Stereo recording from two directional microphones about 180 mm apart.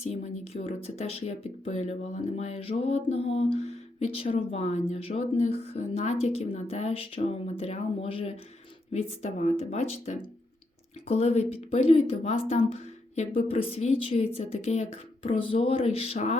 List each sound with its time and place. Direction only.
0.0 s speech: 35° left (ahead or behind)